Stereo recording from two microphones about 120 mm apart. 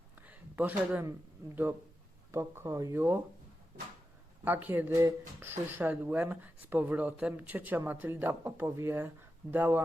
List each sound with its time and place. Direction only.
0.2 s a sound: 15° right (ahead or behind)
2.3 s speech: 25° right (ahead or behind)
4.4 s speech: 15° right (ahead or behind)